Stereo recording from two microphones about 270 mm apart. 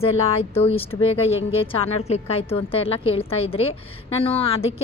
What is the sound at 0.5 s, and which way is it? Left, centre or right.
A woman's voice, left.